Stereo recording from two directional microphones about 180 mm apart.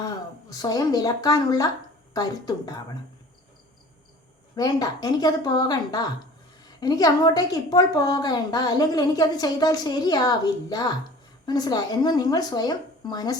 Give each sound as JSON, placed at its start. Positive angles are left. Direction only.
{"t": 0.5, "sound": "a woman's voice", "side_deg": 20}
{"t": 4.5, "sound": "a woman's voice", "side_deg": 20}